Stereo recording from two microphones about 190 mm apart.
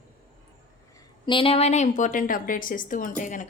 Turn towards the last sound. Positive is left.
turn(degrees=40)  # may be behind; listen again after turning